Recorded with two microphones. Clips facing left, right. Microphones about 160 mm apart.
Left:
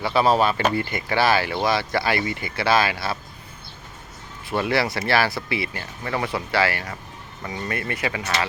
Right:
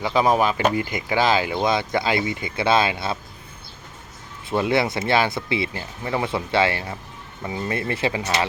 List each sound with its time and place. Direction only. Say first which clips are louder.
0.0 s speech: even; 15° right (ahead or behind)
4.4 s speech: right 2 dB; 20° right (ahead or behind)